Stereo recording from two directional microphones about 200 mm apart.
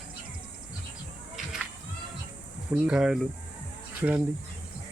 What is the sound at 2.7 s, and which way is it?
Speech, 5° right (ahead or behind).